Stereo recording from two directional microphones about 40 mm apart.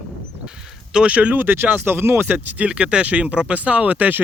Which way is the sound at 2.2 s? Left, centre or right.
Right.